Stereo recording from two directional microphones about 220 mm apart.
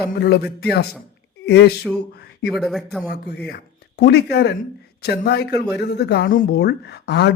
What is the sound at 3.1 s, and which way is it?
Speech, 45° left (ahead or behind).